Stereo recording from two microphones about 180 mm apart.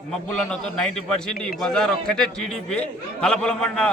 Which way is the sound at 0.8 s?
5° left (ahead or behind).